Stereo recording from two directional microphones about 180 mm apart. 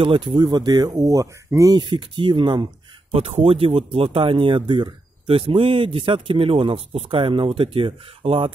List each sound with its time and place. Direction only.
0.0 s speech: 30° right (ahead or behind)